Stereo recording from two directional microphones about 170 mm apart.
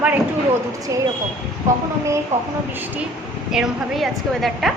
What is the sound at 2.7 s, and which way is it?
A woman's voice, 10° right (ahead or behind).